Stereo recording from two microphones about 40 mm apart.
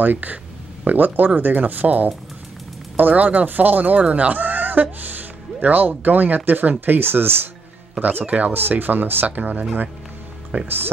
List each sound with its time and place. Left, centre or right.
0.0 s speech: right
8.0 s speech: right
8.5 s speech: right